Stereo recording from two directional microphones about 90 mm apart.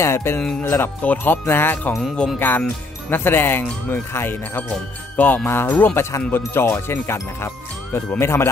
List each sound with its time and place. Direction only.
0.0 s speech: 30° left (ahead or behind)